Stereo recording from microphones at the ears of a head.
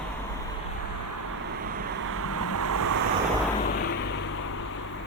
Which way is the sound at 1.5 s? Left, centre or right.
Right.